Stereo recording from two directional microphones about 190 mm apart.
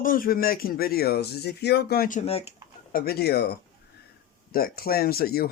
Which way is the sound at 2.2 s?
30° left (ahead or behind).